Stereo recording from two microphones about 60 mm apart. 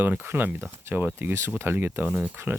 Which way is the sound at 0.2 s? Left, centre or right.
Right.